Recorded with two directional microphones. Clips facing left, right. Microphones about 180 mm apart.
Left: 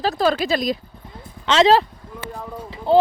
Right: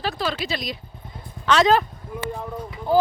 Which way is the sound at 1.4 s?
25° left (ahead or behind).